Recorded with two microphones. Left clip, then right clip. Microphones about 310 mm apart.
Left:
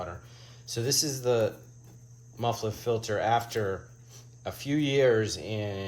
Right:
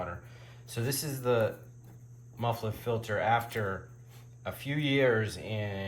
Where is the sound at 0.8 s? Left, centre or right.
Centre.